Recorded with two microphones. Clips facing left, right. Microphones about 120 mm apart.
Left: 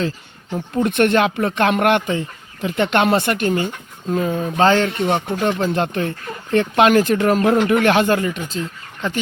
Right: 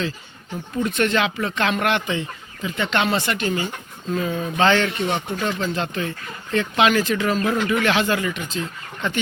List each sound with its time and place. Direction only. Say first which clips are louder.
0.8 s speech: left 5 dB; 60° left (ahead or behind)
2.6 s speech: left 5 dB; 55° left (ahead or behind); by 9.1 s 40° left (ahead or behind)